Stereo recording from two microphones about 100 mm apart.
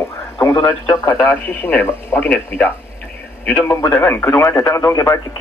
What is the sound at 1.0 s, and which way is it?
A man's voice, 20° left (ahead or behind).